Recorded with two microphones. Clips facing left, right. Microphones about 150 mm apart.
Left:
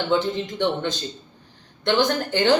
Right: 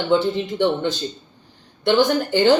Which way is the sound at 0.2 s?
15° right (ahead or behind).